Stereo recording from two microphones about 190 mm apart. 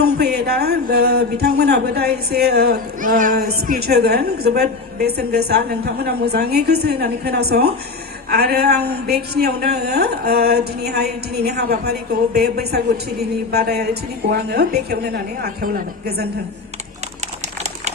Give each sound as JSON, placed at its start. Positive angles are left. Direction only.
{"t": 0.0, "sound": "speech", "side_deg": -60}